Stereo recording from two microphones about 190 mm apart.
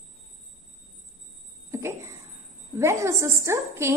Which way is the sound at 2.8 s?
15° right (ahead or behind).